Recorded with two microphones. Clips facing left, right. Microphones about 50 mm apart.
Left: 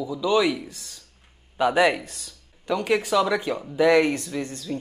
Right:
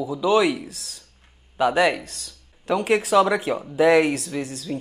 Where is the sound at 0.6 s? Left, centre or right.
Centre.